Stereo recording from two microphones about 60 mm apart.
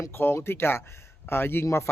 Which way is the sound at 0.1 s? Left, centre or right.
Left.